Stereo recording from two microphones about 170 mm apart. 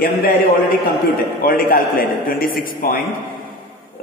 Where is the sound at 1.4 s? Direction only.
55° left (ahead or behind).